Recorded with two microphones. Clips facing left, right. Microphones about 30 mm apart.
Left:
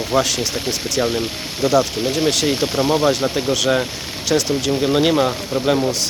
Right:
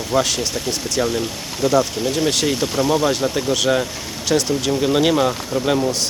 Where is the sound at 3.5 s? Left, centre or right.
Centre.